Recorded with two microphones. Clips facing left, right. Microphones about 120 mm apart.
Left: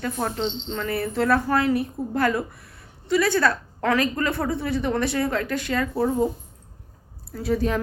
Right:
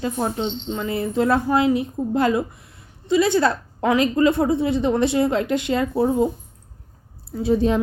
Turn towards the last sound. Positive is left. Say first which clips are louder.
# right 5 dB
turn(degrees=-25)  # may be behind; listen again after turning